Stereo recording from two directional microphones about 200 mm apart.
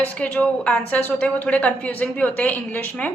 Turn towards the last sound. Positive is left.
turn(degrees=5)  # may be behind; listen again after turning